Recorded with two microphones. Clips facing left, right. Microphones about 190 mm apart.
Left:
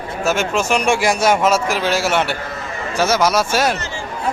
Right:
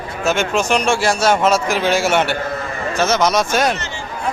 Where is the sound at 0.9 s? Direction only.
15° left (ahead or behind).